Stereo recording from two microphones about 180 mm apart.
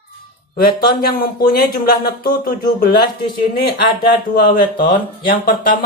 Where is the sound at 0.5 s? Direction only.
60° left (ahead or behind).